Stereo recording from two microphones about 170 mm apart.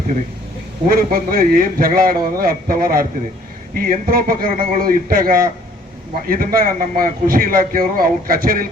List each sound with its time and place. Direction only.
0.9 s a man's voice: 55° right (ahead or behind)